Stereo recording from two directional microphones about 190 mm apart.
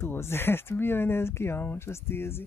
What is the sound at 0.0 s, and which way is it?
Speech, 15° left (ahead or behind).